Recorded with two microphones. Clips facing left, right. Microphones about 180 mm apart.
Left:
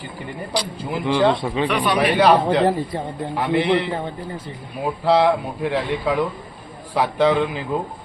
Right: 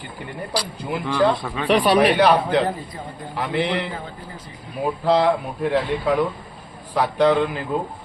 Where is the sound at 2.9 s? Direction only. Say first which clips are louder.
Left 8 dB; 75° left (ahead or behind).